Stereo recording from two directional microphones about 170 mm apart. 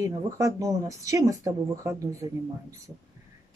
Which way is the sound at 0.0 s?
20° right (ahead or behind).